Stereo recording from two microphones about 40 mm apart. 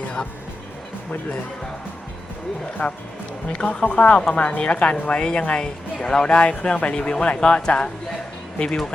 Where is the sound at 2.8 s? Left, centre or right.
Left.